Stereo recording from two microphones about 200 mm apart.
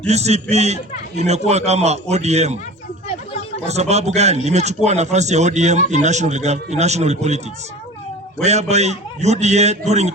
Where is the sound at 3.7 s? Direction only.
35° right (ahead or behind).